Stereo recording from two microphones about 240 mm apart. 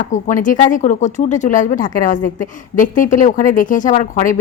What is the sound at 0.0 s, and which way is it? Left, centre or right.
A woman's voice, left.